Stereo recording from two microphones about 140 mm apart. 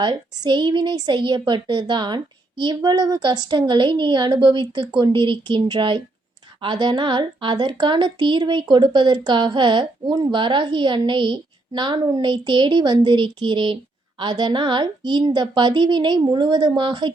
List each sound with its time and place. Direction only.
0.0 s a woman's voice: 30° right (ahead or behind)